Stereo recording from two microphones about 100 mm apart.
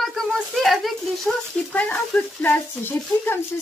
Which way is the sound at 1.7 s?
15° left (ahead or behind).